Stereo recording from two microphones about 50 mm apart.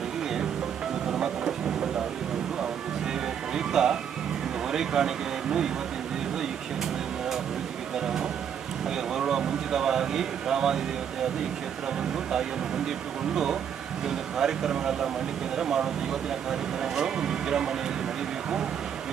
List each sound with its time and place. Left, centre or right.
1.1 s a sound: centre
3.5 s music: centre
4.7 s speech: centre
7.9 s vehicle: centre
9.1 s a sound: centre
13.3 s speech: centre